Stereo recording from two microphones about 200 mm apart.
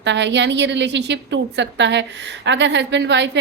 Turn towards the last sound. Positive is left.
turn(degrees=-60)  # may be behind; listen again after turning